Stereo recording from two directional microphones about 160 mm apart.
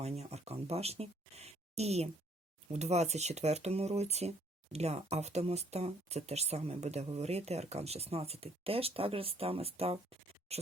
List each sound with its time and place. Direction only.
0.0 s speech: 40° right (ahead or behind)